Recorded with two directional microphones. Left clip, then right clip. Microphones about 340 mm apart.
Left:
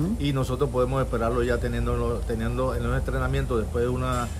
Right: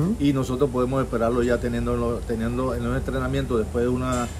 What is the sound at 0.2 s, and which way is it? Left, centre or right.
Speech, centre.